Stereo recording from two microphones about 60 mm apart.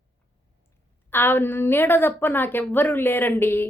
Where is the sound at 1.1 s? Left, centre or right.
Left.